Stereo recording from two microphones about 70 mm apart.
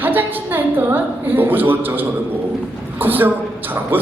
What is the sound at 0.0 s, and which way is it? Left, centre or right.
A woman's voice, right.